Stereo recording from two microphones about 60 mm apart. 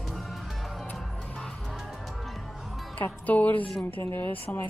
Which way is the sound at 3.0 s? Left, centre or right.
Left.